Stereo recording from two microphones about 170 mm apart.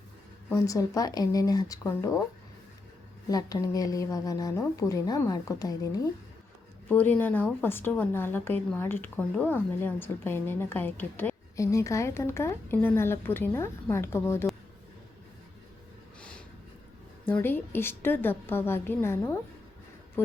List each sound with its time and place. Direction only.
0.5 s speech: 20° left (ahead or behind)
3.2 s speech: 20° left (ahead or behind)
6.8 s a woman's voice: 10° left (ahead or behind)
17.2 s a woman's voice: 10° left (ahead or behind)